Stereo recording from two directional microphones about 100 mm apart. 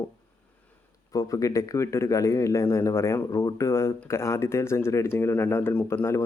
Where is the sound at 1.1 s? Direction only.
35° left (ahead or behind).